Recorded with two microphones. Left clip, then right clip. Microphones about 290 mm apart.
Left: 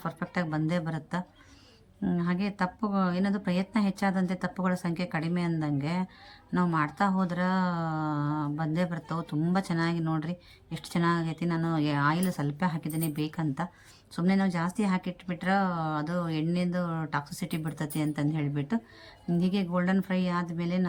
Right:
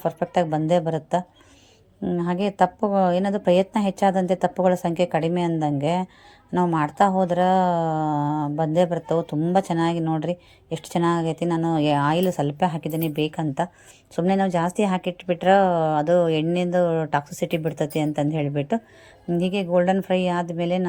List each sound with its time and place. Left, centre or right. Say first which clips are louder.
0.2 s speech: right 9 dB; centre
2.0 s speech: right 8 dB; centre
8.9 s speech: right 13 dB; right
9.2 s speech: right 9 dB; centre